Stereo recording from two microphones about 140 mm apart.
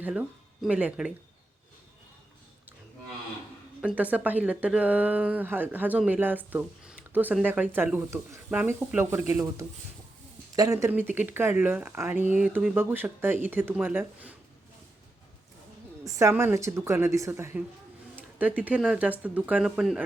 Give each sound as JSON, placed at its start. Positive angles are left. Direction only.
{"t": 0.0, "sound": "speech", "side_deg": -5}
{"t": 3.8, "sound": "speech", "side_deg": -10}
{"t": 10.5, "sound": "speech", "side_deg": -25}
{"t": 16.0, "sound": "speech", "side_deg": -20}
{"t": 18.2, "sound": "a sound", "side_deg": -10}
{"t": 18.8, "sound": "speech", "side_deg": -10}